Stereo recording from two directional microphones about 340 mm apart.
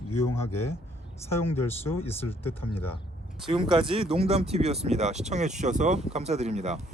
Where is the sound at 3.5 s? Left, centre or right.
Centre.